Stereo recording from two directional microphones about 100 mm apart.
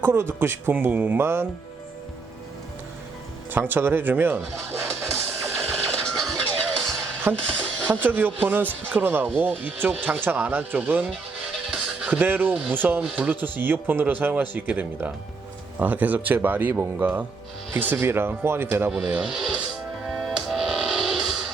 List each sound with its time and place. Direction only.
0.0 s speech: 25° right (ahead or behind)
3.5 s speech: 20° right (ahead or behind)
4.9 s music: 5° right (ahead or behind)
7.3 s speech: 20° right (ahead or behind)
18.9 s speech: 10° right (ahead or behind)
20.1 s music: centre (ahead or behind)